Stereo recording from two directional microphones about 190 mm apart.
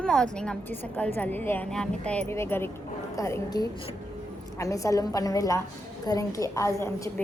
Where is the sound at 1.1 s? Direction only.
10° left (ahead or behind).